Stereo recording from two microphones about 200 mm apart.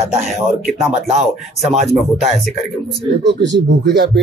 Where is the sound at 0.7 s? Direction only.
Centre (ahead or behind).